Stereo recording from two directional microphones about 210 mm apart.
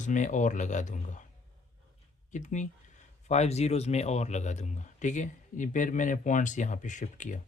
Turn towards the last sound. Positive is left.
turn(degrees=35)  # may be behind; listen again after turning